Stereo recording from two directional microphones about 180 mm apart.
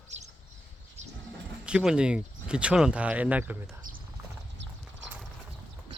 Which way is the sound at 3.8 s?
50° right (ahead or behind).